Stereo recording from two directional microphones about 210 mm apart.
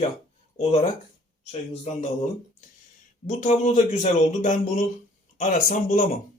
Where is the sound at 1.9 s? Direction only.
35° left (ahead or behind).